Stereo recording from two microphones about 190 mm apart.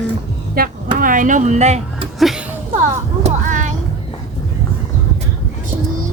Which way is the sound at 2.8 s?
40° right (ahead or behind).